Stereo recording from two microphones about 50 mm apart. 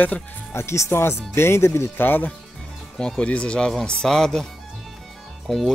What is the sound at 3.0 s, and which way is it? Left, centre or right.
Speech, centre.